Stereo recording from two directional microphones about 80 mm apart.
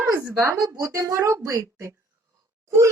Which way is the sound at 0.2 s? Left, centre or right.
Right.